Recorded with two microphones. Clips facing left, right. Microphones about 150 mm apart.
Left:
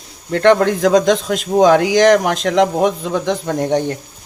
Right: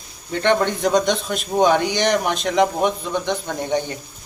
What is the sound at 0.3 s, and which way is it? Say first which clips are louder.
Speech: left 7 dB; 85° left.